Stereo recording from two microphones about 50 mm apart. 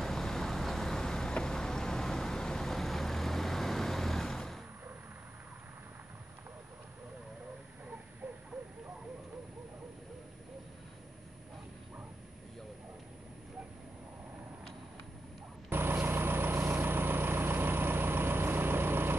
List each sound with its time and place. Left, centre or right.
0.0 s vehicle: centre
15.7 s vehicle: right